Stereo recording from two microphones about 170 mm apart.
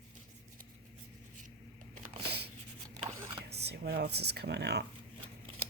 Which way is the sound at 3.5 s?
75° right (ahead or behind).